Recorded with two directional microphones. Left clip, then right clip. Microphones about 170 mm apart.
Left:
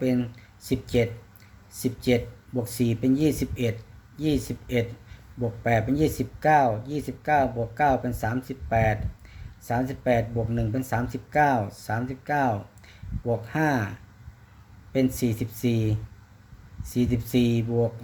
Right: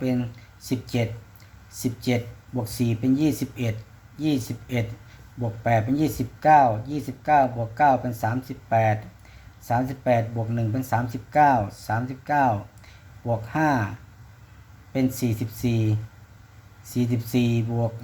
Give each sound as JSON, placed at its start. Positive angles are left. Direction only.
{"t": 0.0, "sound": "speech", "side_deg": 20}
{"t": 14.9, "sound": "speech", "side_deg": 15}